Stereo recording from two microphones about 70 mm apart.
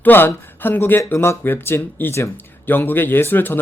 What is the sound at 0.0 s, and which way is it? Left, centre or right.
Speech, left.